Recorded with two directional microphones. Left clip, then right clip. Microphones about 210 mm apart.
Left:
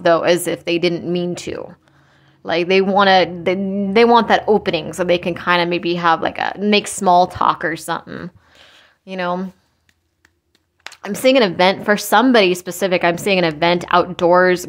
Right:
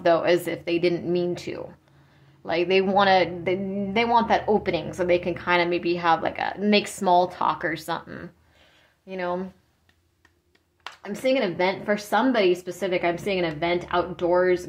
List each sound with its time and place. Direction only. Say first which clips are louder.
0.0 s speech: left 6 dB; 30° left (ahead or behind)
10.8 s speech: left 10 dB; 45° left (ahead or behind)